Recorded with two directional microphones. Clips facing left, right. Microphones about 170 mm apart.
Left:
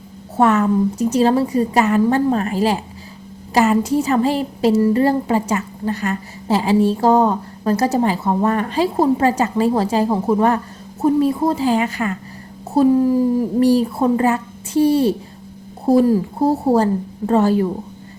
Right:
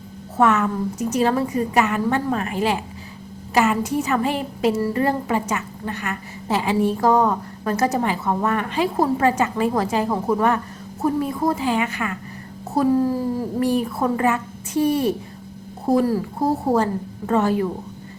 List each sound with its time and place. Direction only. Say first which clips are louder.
0.3 s a woman's voice: left 4 dB; 35° left (ahead or behind)